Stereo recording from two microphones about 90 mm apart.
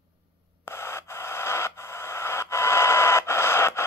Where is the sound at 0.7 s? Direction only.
25° left (ahead or behind).